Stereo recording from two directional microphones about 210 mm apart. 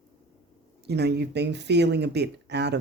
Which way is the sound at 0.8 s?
50° right (ahead or behind).